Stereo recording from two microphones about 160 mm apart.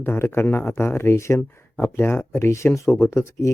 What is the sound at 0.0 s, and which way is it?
Speech, 15° left (ahead or behind).